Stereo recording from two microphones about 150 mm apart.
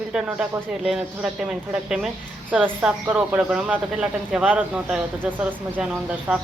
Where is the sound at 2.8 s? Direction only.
10° right (ahead or behind).